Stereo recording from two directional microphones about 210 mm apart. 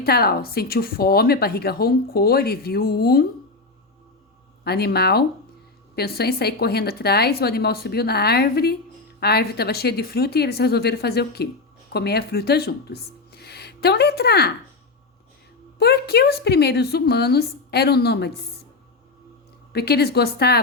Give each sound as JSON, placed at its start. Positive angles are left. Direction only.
{"t": 0.0, "sound": "speech", "side_deg": 45}
{"t": 4.6, "sound": "speech", "side_deg": 50}
{"t": 15.8, "sound": "speech", "side_deg": 50}
{"t": 19.7, "sound": "speech", "side_deg": 50}